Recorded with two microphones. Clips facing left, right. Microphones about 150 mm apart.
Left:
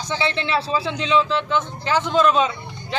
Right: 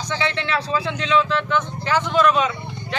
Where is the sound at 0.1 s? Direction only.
15° left (ahead or behind).